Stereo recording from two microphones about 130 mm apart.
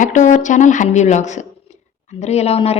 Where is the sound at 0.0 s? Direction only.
75° left (ahead or behind).